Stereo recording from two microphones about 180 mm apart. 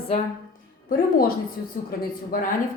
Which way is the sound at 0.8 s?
50° left (ahead or behind).